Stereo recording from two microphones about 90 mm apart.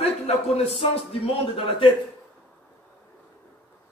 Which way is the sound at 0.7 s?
80° left.